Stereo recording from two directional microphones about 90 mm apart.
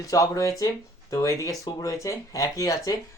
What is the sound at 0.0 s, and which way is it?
Speech, 40° left (ahead or behind).